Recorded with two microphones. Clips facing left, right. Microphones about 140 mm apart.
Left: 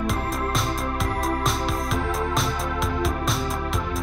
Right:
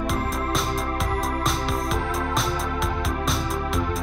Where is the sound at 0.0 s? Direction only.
Centre (ahead or behind).